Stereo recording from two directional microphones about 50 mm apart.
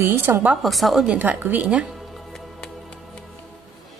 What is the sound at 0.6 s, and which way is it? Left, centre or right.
Speech, centre.